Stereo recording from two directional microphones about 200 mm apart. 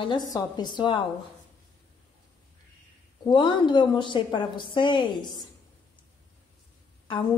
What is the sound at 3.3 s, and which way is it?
A woman's voice, 25° left (ahead or behind).